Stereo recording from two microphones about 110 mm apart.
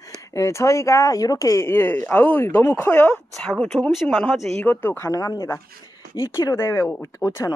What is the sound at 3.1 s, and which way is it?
Speech, 5° left (ahead or behind).